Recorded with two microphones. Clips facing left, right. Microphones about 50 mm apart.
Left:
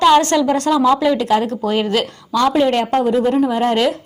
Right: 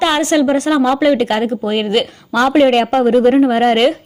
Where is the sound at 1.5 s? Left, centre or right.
Right.